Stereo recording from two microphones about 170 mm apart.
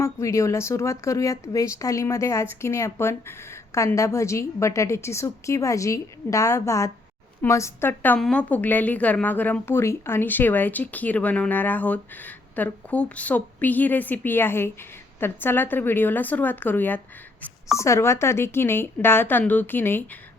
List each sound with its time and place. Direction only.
0.0 s a woman's voice: 15° left (ahead or behind)